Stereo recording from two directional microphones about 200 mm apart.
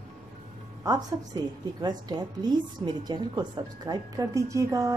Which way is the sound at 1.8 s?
20° right (ahead or behind).